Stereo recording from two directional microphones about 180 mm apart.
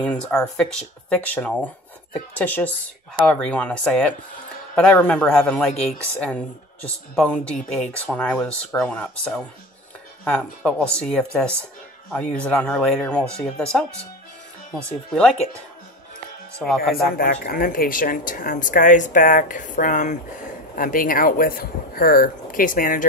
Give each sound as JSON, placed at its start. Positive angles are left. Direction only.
{"t": 0.0, "sound": "speech", "side_deg": 5}
{"t": 16.5, "sound": "speech", "side_deg": 0}
{"t": 16.9, "sound": "speech", "side_deg": 55}